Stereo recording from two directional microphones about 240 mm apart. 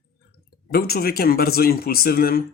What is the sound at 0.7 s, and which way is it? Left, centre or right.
Speech, left.